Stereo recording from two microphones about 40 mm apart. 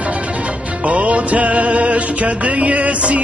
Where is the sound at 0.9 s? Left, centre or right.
Right.